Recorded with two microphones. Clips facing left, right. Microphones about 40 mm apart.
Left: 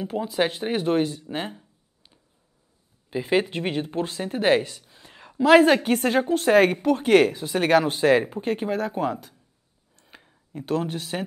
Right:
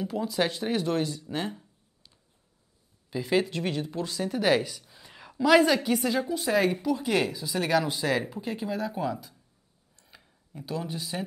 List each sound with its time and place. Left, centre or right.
0.0 s speech: left; by 5.4 s centre
5.4 s a woman's voice: left
9.9 s a sound: left
10.5 s a woman's voice: left